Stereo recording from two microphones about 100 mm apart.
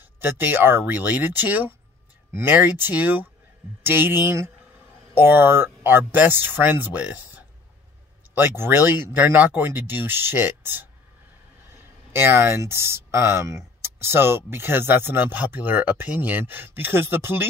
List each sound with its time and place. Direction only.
0.0 s speech: 20° right (ahead or behind)